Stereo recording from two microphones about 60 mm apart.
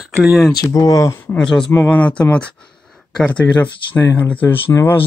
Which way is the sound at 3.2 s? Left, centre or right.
Left.